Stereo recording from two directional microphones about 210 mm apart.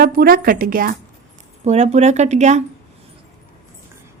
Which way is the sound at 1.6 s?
30° right (ahead or behind).